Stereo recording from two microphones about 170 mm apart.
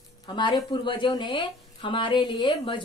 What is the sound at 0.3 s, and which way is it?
A woman's voice, 25° left (ahead or behind).